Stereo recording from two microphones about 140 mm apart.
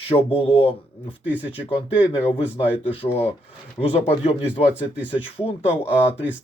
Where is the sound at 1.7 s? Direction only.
40° left (ahead or behind).